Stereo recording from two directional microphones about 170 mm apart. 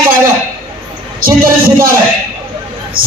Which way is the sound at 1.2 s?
55° right (ahead or behind).